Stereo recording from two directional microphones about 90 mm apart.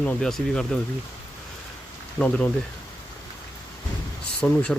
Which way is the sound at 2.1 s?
10° left (ahead or behind).